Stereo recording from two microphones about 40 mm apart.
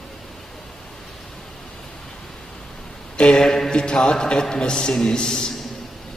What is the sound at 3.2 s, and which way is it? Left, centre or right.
Speech, left.